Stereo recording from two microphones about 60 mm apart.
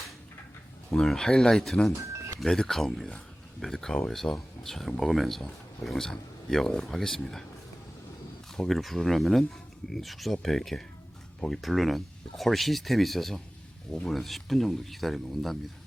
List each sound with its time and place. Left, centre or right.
0.9 s speech: centre
2.0 s a sound: right
2.4 s speech: centre
8.5 s speech: centre